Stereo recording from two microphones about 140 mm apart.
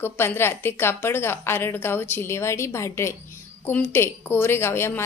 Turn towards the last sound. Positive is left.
turn(degrees=15)  # may be behind; listen again after turning